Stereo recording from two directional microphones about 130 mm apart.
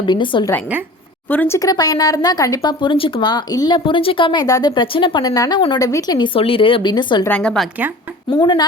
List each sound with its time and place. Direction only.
0.0 s speech: 40° left (ahead or behind)
1.3 s a woman's voice: 15° left (ahead or behind)
1.5 s speech: 30° left (ahead or behind)
3.8 s speech: 40° left (ahead or behind)
7.3 s a woman's voice: 10° left (ahead or behind)
8.3 s speech: 35° left (ahead or behind)